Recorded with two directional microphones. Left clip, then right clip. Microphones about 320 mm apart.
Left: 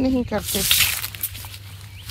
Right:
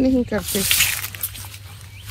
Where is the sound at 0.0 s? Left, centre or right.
Centre.